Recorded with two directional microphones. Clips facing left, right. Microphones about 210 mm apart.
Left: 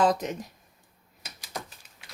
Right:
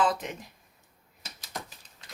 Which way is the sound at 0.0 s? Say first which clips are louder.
Left 4 dB; 40° left (ahead or behind).